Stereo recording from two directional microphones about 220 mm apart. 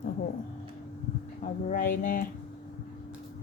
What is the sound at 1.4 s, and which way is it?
Speech, 35° left (ahead or behind).